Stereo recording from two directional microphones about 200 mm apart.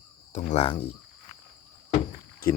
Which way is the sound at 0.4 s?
25° left (ahead or behind).